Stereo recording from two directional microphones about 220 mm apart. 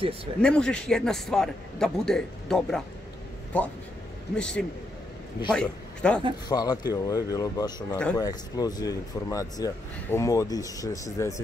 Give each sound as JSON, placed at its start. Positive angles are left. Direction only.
{"t": 0.4, "sound": "a man's voice", "side_deg": 5}
{"t": 4.4, "sound": "a man's voice", "side_deg": 5}
{"t": 6.5, "sound": "speech", "side_deg": 20}